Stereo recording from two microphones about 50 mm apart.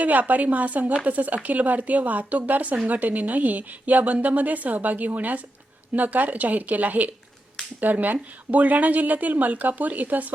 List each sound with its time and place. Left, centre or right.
0.0 s a woman's voice: right